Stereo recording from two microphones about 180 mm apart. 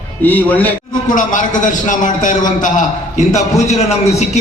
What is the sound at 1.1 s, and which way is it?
A man's voice, 45° left (ahead or behind).